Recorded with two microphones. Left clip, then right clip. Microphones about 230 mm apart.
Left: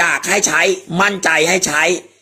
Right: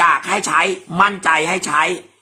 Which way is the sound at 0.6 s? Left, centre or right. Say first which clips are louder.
Even; centre.